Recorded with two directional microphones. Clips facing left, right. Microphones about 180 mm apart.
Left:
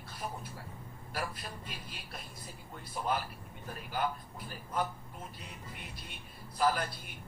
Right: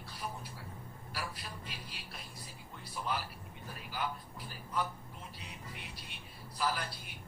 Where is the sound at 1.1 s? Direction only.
50° left (ahead or behind).